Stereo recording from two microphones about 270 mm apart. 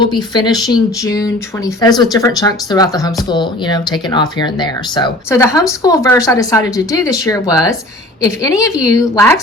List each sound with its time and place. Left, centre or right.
0.0 s speech: centre